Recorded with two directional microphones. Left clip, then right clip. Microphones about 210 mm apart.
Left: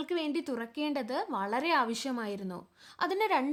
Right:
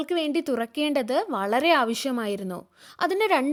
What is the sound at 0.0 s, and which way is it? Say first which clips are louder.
Speech: right 7 dB; 30° right (ahead or behind).